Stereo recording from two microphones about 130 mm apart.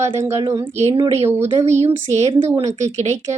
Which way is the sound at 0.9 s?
50° right (ahead or behind).